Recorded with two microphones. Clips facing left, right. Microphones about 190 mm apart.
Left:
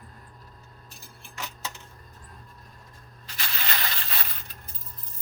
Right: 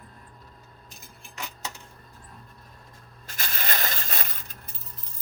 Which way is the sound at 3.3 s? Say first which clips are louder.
Right 2 dB; 45° right (ahead or behind).